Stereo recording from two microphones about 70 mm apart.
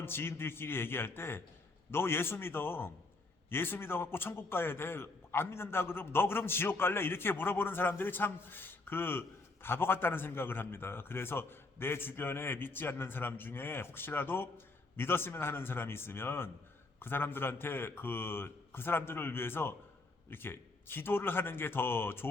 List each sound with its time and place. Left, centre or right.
0.0 s a man's voice: left